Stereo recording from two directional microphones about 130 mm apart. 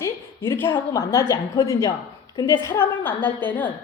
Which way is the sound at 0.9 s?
25° left (ahead or behind).